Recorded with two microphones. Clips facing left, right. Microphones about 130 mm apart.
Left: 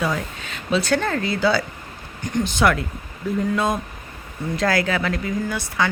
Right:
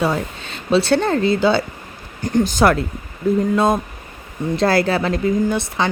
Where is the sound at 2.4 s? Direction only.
40° right (ahead or behind).